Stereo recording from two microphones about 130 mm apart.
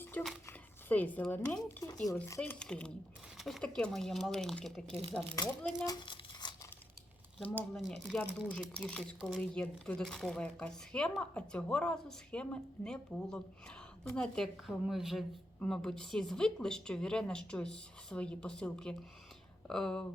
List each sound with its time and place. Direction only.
0.1 s speech: 10° left (ahead or behind)
2.2 s speech: 20° left (ahead or behind)
2.6 s a woman's voice: 5° left (ahead or behind)
5.4 s speech: 30° left (ahead or behind)
7.7 s a woman's voice: centre (ahead or behind)